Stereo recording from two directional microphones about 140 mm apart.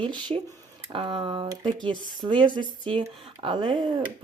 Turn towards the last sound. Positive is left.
turn(degrees=-30)  # may be behind; listen again after turning